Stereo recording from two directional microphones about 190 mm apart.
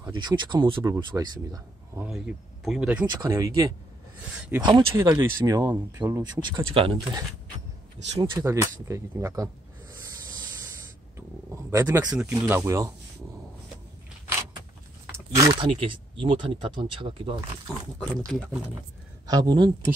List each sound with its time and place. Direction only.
0.0 s speech: 20° right (ahead or behind)
2.0 s speech: 5° right (ahead or behind)
3.2 s speech: 15° right (ahead or behind)
4.4 s speech: 5° right (ahead or behind)
4.6 s speech: 20° right (ahead or behind)
6.4 s speech: 25° right (ahead or behind)
11.1 s speech: 15° right (ahead or behind)
15.0 s a sound: 15° right (ahead or behind)
15.7 s speech: 30° right (ahead or behind)
17.9 s speech: 5° left (ahead or behind)
19.2 s speech: 20° right (ahead or behind)